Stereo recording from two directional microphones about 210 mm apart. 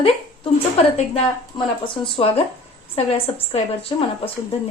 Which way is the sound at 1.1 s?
25° left (ahead or behind).